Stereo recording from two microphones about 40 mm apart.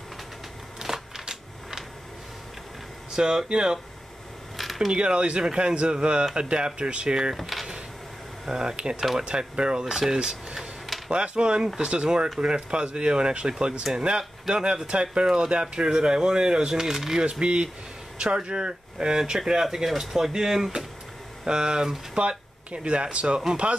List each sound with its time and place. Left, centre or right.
0.7 s a sound: centre
3.2 s speech: centre
4.9 s speech: right
7.3 s speech: centre
8.5 s speech: centre
15.2 s speech: centre
17.2 s speech: right